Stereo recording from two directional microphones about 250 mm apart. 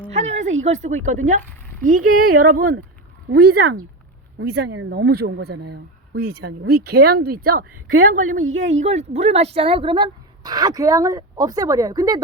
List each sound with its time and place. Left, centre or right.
0.1 s speech: right